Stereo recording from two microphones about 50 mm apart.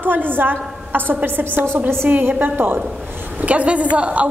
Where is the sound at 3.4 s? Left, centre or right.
Right.